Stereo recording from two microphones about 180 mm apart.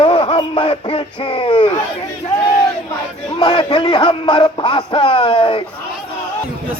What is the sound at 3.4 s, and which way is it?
Music, 25° left (ahead or behind).